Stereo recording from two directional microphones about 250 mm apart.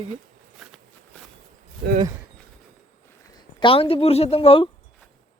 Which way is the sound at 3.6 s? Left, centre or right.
Left.